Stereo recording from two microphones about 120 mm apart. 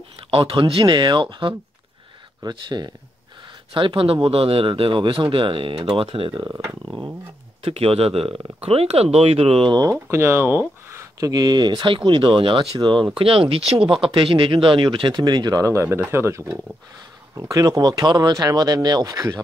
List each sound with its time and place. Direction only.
0.3 s speech: 50° right (ahead or behind)
6.5 s speech: 20° right (ahead or behind)
7.6 s speech: 55° right (ahead or behind)
10.1 s speech: 20° right (ahead or behind)
16.4 s speech: 5° right (ahead or behind)
17.4 s speech: 30° right (ahead or behind)